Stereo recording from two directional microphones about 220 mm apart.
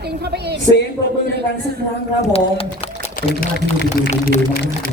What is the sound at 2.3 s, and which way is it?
Speech, 25° left (ahead or behind).